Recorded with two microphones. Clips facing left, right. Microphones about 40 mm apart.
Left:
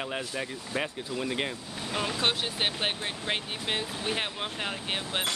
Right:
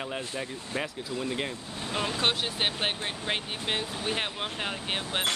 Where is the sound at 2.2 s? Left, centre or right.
Centre.